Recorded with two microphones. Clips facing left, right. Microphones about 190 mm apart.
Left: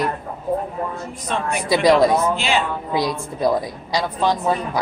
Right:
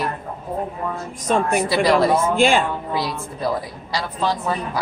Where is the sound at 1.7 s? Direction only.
15° left (ahead or behind).